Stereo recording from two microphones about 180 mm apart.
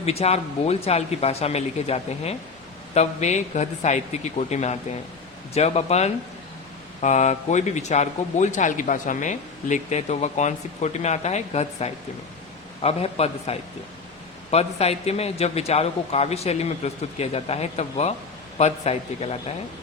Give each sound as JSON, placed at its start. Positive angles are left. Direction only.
{"t": 0.0, "sound": "speech", "side_deg": 35}